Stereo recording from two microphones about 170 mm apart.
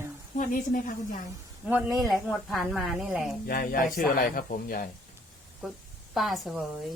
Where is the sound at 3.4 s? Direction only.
60° left (ahead or behind).